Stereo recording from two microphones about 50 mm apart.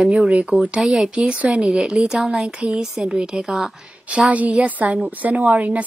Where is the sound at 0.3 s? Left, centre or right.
Right.